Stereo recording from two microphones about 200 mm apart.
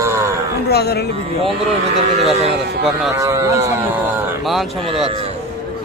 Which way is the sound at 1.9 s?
30° right (ahead or behind).